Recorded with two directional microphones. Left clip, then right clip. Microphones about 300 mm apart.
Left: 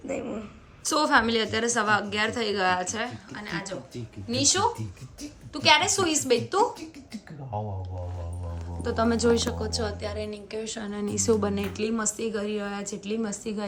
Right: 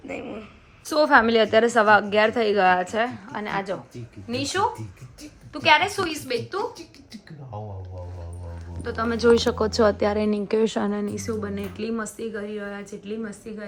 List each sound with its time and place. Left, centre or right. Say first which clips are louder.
0.1 s a woman's voice: left 1 dB; centre
4.3 s a woman's voice: even; centre
8.8 s a woman's voice: right 2 dB; centre